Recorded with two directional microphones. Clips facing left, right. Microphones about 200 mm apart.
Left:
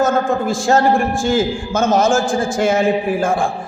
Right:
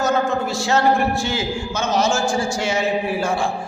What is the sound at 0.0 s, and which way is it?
A man's voice, 50° left (ahead or behind).